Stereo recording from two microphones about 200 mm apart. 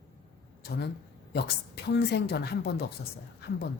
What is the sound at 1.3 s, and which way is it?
A woman's voice, 55° left (ahead or behind).